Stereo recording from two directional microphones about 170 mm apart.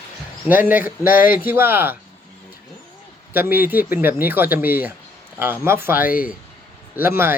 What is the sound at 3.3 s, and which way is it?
Speech, 10° right (ahead or behind).